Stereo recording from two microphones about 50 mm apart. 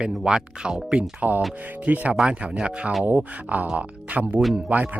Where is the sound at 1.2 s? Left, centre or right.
Right.